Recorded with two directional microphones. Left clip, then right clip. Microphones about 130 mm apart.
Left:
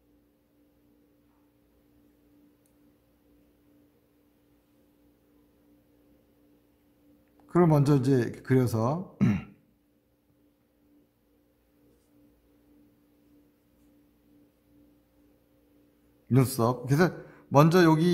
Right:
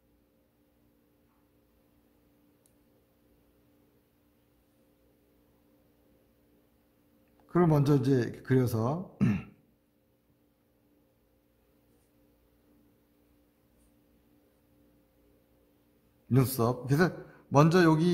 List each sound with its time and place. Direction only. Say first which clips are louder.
7.4 s speech: left 3 dB; 35° left (ahead or behind)
16.3 s a man's voice: left 3 dB; 30° left (ahead or behind)